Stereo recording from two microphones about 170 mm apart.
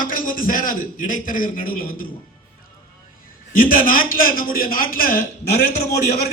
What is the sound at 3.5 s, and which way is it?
A man's voice, 55° left (ahead or behind).